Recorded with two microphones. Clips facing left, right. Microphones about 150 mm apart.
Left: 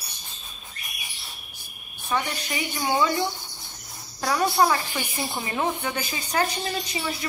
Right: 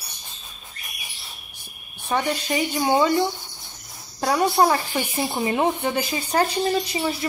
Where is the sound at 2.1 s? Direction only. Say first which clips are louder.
Right 5 dB; 35° right (ahead or behind).